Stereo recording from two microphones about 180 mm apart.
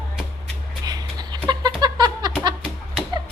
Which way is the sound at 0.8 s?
20° right (ahead or behind).